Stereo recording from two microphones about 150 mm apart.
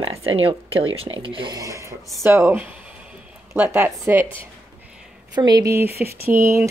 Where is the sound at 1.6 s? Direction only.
20° right (ahead or behind).